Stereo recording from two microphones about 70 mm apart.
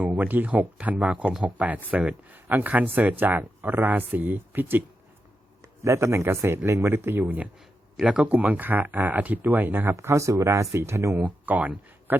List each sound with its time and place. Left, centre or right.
0.2 s speech: right
5.6 s speech: right
8.0 s speech: centre
9.9 s speech: right
11.2 s speech: right